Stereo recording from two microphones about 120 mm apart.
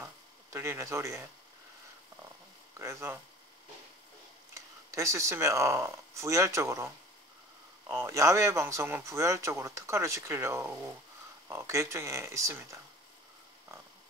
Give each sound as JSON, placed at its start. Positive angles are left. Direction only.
{"t": 0.0, "sound": "a sound", "side_deg": -20}
{"t": 2.8, "sound": "speech", "side_deg": -20}
{"t": 4.6, "sound": "speech", "side_deg": -25}
{"t": 7.9, "sound": "speech", "side_deg": -20}